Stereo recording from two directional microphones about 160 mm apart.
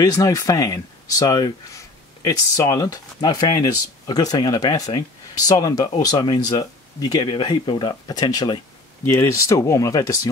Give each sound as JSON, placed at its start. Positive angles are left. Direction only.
{"t": 0.0, "sound": "speech", "side_deg": 20}